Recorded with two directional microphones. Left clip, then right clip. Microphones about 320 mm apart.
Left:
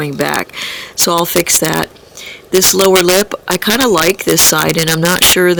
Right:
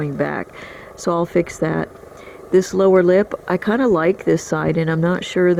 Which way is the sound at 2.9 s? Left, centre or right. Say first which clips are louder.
Left 4 dB; centre.